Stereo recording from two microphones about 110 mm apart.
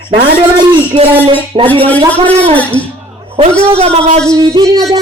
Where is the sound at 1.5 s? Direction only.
60° right (ahead or behind).